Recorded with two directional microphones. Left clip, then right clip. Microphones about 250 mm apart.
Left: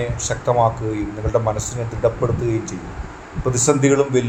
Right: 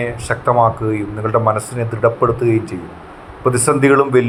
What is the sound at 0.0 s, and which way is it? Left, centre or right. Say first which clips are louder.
Speech: right 4 dB; centre.